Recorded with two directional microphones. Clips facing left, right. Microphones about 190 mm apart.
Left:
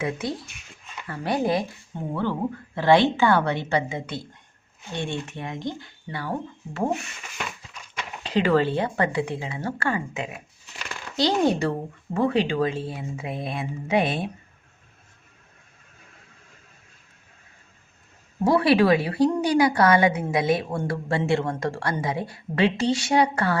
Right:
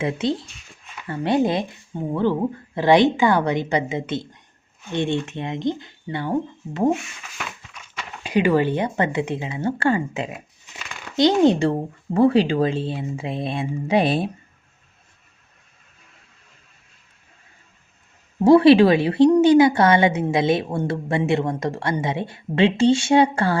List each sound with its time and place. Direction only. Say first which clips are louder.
0.0 s a woman's voice: right 5 dB; 25° right (ahead or behind)
1.9 s a woman's voice: right 6 dB; 10° right (ahead or behind)
8.2 s a woman's voice: right 2 dB; 15° right (ahead or behind); by 14.3 s 35° right (ahead or behind)
18.4 s a woman's voice: right 7 dB; 25° right (ahead or behind)